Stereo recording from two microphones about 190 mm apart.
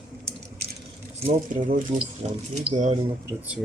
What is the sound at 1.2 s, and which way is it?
Speech, 40° right (ahead or behind).